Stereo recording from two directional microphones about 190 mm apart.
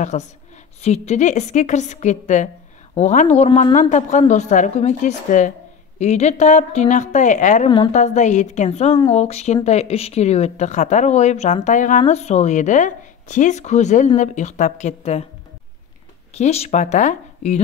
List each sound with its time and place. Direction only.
0.1 s speech: 40° left (ahead or behind)
16.3 s speech: 35° left (ahead or behind)